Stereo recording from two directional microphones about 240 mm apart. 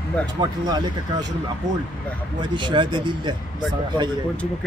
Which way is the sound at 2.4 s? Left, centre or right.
Centre.